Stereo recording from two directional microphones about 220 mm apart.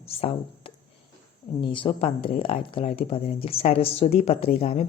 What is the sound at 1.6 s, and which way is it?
A woman's voice, 20° left (ahead or behind).